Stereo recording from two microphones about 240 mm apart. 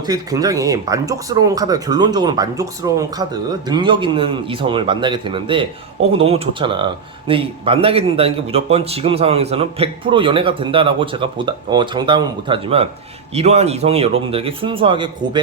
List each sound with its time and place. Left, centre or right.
0.0 s speech: centre